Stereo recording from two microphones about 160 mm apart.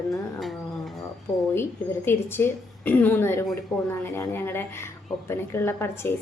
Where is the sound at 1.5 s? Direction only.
15° left (ahead or behind).